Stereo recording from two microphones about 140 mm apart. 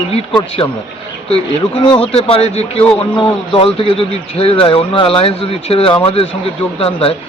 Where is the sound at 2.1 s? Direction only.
45° left (ahead or behind).